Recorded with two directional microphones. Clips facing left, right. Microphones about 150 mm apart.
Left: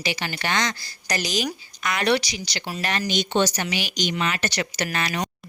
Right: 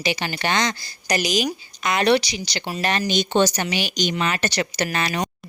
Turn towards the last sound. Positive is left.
turn(degrees=-30)  # may be behind; listen again after turning